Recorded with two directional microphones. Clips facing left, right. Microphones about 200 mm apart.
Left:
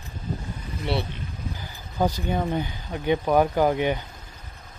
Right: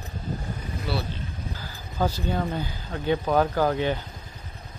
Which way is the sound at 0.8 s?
25° left (ahead or behind).